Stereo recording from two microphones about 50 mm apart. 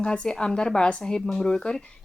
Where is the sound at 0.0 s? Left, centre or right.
Centre.